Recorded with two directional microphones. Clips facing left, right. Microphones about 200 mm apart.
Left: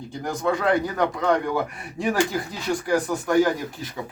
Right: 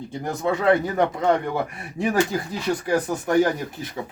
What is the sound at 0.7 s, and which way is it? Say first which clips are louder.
Speech: right 3 dB; 25° right (ahead or behind).